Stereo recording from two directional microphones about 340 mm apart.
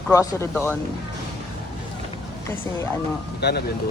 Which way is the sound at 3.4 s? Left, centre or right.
Left.